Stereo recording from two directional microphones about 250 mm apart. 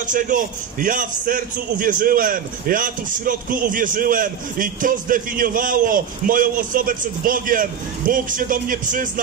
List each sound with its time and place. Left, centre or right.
0.0 s a man's voice: right